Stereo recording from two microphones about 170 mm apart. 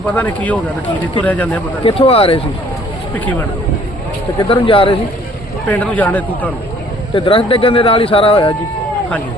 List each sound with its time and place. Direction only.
0.1 s speech: 10° left (ahead or behind)
1.8 s speech: 35° left (ahead or behind)
4.4 s speech: 30° left (ahead or behind)
5.6 s speech: 10° left (ahead or behind)
7.1 s speech: 30° left (ahead or behind)